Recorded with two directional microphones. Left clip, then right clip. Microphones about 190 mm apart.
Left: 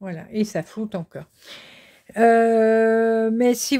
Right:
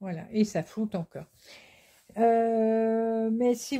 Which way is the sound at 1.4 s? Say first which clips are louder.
Left 10 dB; 40° left (ahead or behind).